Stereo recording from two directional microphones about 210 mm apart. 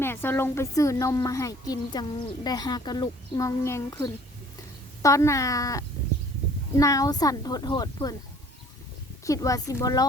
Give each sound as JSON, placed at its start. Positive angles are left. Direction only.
{"t": 0.0, "sound": "a woman's voice", "side_deg": 10}
{"t": 9.2, "sound": "a woman's voice", "side_deg": 15}